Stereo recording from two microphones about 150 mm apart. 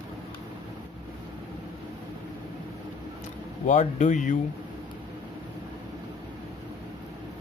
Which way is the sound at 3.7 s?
55° left (ahead or behind).